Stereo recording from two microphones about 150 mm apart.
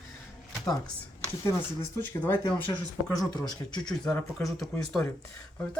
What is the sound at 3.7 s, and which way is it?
Speech, 5° left (ahead or behind).